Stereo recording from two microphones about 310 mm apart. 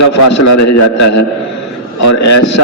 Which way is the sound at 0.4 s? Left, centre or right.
Left.